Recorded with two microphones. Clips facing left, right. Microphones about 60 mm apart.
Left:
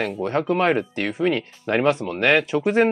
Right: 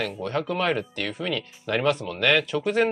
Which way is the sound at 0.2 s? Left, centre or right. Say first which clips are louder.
Left 6 dB; left.